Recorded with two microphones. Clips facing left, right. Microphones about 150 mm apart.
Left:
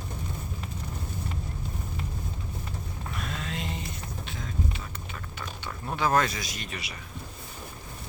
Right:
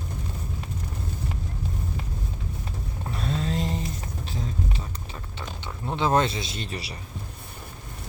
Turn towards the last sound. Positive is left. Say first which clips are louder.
# right 4 dB
turn(degrees=-35)  # may be behind; listen again after turning